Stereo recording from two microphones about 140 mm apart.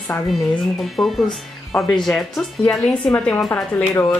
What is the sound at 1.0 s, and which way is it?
Speech, 5° left (ahead or behind).